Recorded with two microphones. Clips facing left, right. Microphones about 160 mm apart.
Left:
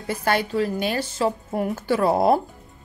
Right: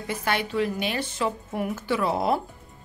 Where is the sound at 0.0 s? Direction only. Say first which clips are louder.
Left 4 dB; 40° left (ahead or behind).